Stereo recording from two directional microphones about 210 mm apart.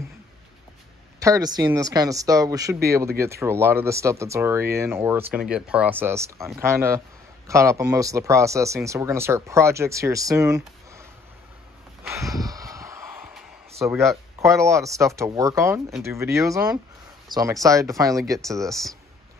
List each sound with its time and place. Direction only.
1.2 s speech: 15° right (ahead or behind)
12.1 s a sound: 15° right (ahead or behind)
13.7 s speech: 15° right (ahead or behind)
18.6 s speech: centre (ahead or behind)